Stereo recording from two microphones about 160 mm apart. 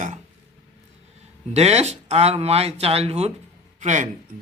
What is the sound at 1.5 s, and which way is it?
Speech, 45° right (ahead or behind).